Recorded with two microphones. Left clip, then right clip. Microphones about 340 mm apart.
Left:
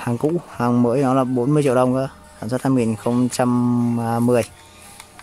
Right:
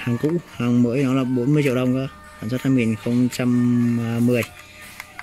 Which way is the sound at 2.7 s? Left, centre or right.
Left.